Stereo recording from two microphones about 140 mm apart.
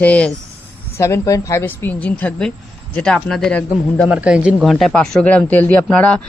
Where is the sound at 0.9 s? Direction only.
20° left (ahead or behind).